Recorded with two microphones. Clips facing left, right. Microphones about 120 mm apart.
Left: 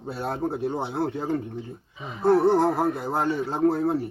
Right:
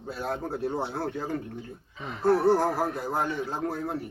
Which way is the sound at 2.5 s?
20° left (ahead or behind).